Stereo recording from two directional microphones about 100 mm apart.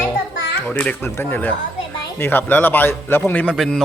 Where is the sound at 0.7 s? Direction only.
15° left (ahead or behind).